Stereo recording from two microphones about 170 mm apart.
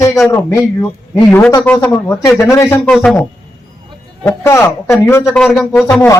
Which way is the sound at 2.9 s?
5° left (ahead or behind).